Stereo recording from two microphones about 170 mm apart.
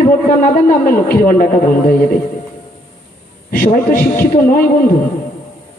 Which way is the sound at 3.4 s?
60° left (ahead or behind).